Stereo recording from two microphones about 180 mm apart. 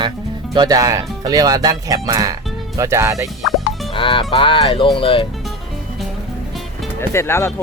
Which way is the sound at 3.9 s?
30° left (ahead or behind).